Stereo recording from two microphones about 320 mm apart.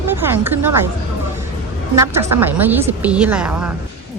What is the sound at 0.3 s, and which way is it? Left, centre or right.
Speech, centre.